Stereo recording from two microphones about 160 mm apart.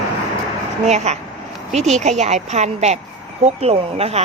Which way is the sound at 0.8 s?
45° right (ahead or behind).